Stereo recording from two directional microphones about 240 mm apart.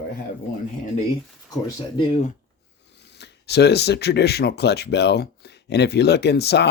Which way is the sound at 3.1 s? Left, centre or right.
Left.